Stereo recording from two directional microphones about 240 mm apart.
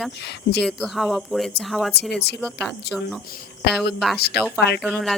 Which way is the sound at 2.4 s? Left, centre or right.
Centre.